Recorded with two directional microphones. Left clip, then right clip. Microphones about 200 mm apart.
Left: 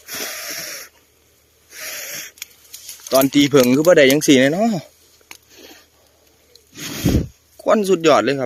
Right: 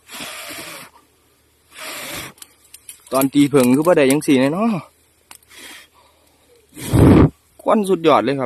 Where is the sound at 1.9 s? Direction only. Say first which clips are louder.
Right 1 dB; 30° right (ahead or behind).